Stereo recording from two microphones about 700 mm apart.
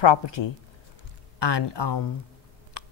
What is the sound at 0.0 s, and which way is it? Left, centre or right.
A woman's voice, left.